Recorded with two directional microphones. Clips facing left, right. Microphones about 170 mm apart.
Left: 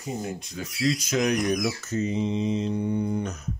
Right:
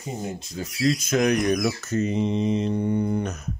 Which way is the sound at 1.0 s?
55° right (ahead or behind).